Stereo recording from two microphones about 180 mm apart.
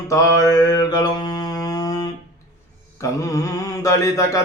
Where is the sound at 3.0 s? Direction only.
20° left (ahead or behind).